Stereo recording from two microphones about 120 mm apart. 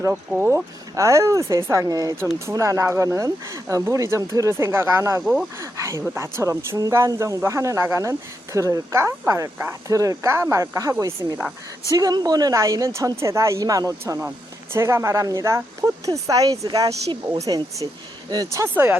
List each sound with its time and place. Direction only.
0.4 s speech: 25° right (ahead or behind)
5.2 s speech: centre (ahead or behind)
5.5 s speech: 25° right (ahead or behind)
14.2 s speech: 15° right (ahead or behind)